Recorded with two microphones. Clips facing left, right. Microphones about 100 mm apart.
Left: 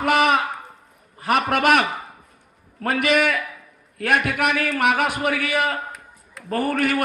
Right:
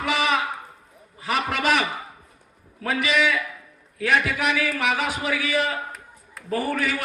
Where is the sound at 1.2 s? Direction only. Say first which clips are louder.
Left 5 dB; 55° left (ahead or behind).